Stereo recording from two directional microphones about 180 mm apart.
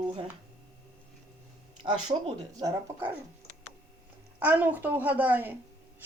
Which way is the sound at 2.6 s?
15° right (ahead or behind).